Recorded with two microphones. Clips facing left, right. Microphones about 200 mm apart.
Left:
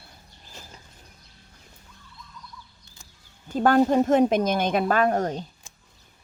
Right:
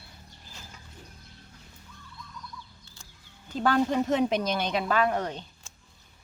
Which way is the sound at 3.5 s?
50° left (ahead or behind).